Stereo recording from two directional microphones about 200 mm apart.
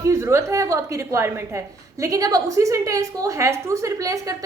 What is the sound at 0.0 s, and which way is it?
A woman's voice, 15° right (ahead or behind).